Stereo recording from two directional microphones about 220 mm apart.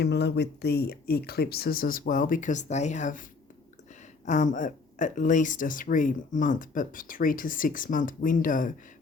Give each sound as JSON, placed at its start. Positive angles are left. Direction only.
{"t": 0.0, "sound": "speech", "side_deg": 50}
{"t": 4.3, "sound": "speech", "side_deg": 35}